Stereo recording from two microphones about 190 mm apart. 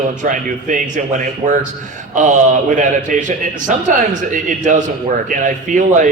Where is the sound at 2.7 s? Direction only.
40° right (ahead or behind).